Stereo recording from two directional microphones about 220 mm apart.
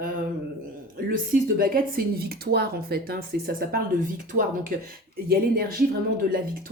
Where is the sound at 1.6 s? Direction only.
40° right (ahead or behind).